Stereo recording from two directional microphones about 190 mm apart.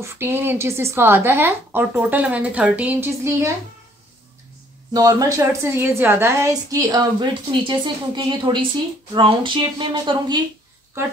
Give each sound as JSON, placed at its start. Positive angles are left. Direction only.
{"t": 0.0, "sound": "a woman's voice", "side_deg": -10}
{"t": 4.9, "sound": "a woman's voice", "side_deg": -20}